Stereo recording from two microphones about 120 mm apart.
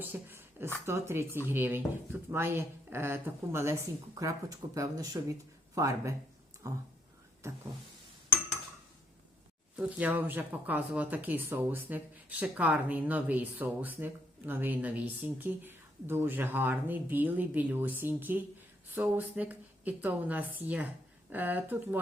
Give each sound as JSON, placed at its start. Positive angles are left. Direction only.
{"t": 0.1, "sound": "a sound", "side_deg": -20}
{"t": 0.9, "sound": "a woman's voice", "side_deg": -20}
{"t": 9.7, "sound": "speech", "side_deg": -15}